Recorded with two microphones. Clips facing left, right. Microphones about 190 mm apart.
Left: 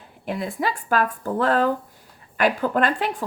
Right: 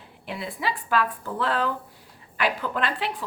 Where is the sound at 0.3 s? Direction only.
45° left (ahead or behind).